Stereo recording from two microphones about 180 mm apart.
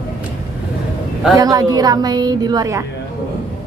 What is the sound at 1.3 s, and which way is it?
Speech, 20° right (ahead or behind).